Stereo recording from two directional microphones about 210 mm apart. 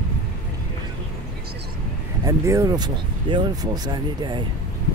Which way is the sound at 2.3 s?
15° right (ahead or behind).